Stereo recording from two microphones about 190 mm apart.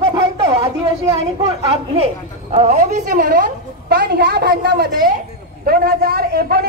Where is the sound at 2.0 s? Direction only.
35° right (ahead or behind).